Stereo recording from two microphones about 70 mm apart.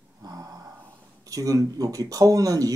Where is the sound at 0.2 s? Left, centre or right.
Right.